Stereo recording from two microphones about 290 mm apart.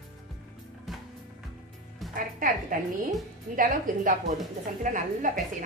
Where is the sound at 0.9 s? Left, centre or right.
Centre.